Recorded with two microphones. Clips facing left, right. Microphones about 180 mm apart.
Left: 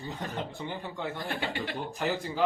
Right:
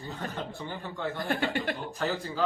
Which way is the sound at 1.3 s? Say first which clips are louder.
Right 4 dB; 50° right (ahead or behind).